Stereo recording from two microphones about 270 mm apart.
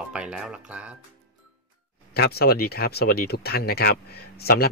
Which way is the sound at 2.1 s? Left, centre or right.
Left.